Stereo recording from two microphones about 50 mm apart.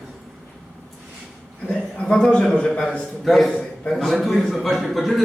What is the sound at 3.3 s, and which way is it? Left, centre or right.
A man's voice, centre.